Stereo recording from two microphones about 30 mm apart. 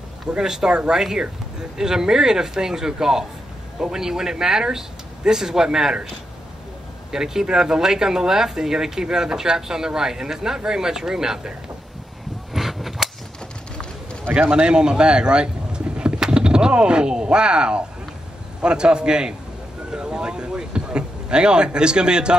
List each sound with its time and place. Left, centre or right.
0.4 s a man's voice: centre
7.1 s speech: centre
12.5 s cap gun: centre
14.7 s a man's voice: right